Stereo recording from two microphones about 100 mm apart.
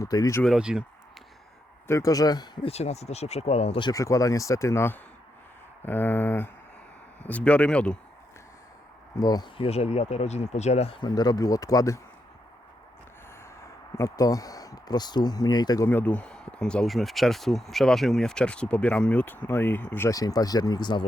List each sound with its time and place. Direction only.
0.0 s speech: 35° left (ahead or behind)
0.4 s speech: 5° right (ahead or behind)
1.9 s speech: 35° left (ahead or behind)
2.6 s speech: 90° left
3.9 s speech: 35° left (ahead or behind)
5.8 s a sound: 20° left (ahead or behind)
7.2 s speech: 15° left (ahead or behind)
9.1 s speech: 40° left (ahead or behind)
9.6 s speech: 90° left
11.0 s speech: 40° left (ahead or behind)
13.9 s speech: 35° left (ahead or behind)
15.9 s speech: 15° left (ahead or behind)
20.1 s speech: 40° left (ahead or behind)